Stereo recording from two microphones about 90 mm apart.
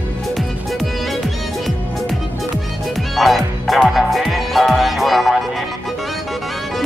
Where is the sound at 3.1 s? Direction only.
Centre (ahead or behind).